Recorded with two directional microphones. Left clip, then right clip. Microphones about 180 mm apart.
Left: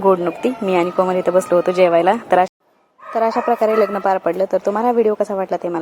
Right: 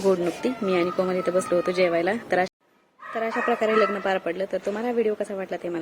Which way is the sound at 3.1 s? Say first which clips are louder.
Left 8 dB; 25° left (ahead or behind).